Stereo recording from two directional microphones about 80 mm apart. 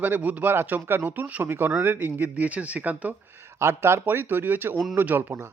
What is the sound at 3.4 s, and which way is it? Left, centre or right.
Speech, right.